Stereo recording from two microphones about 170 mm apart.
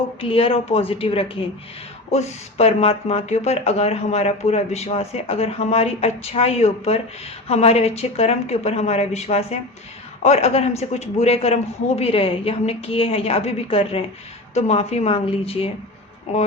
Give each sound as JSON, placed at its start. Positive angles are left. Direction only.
{"t": 0.2, "sound": "speech", "side_deg": 35}